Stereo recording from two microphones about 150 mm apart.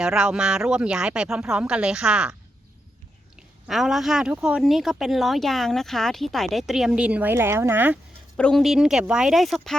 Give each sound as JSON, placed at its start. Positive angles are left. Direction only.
{"t": 0.0, "sound": "speech", "side_deg": -5}
{"t": 3.7, "sound": "speech", "side_deg": 0}
{"t": 8.4, "sound": "speech", "side_deg": 5}